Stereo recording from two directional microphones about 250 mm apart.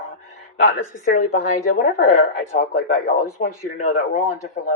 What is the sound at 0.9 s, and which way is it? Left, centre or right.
A woman's voice, left.